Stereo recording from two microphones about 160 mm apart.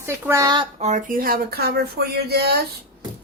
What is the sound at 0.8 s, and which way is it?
Speech, 50° right (ahead or behind).